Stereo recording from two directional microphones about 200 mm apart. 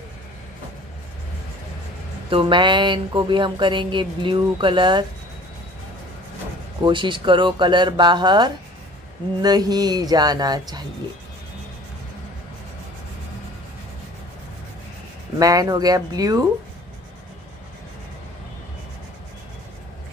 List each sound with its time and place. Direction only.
2.2 s speech: 25° right (ahead or behind)
6.8 s speech: 25° right (ahead or behind)
15.3 s speech: 20° right (ahead or behind)